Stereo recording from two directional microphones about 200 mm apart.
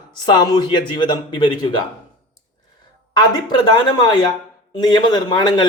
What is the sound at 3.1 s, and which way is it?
Speech, 20° left (ahead or behind).